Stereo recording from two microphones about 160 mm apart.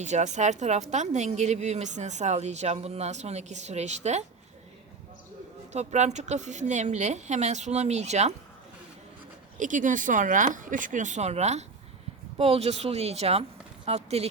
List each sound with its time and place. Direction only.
0.0 s a woman's voice: 45° right (ahead or behind)
5.7 s a woman's voice: 45° right (ahead or behind)
9.6 s a woman's voice: 50° right (ahead or behind)